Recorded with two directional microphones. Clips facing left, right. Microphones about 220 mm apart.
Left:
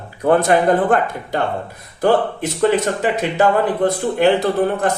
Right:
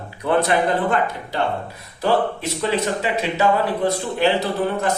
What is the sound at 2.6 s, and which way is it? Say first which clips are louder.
A man's voice: left 6 dB; 50° left (ahead or behind).